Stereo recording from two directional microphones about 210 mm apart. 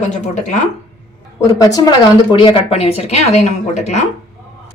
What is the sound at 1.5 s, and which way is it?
A woman's voice, 15° left (ahead or behind).